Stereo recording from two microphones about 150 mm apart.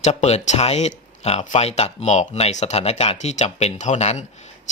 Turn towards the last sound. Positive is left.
turn(degrees=50)  # may be behind; listen again after turning